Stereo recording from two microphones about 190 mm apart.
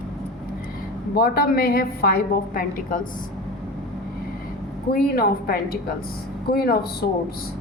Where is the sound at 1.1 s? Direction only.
50° left (ahead or behind).